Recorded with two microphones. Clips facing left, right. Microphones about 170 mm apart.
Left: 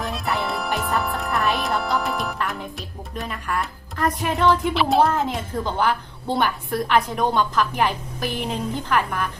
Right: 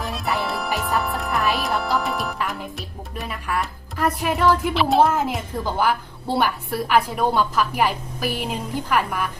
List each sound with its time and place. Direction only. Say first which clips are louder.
0.0 s music: even; centre (ahead or behind)
3.2 s speech: even; 5° right (ahead or behind)